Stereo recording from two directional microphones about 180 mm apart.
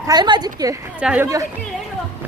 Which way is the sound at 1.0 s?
5° right (ahead or behind).